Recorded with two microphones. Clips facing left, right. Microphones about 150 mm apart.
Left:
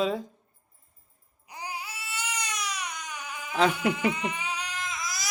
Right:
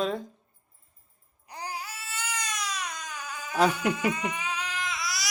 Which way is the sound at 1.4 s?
15° left (ahead or behind).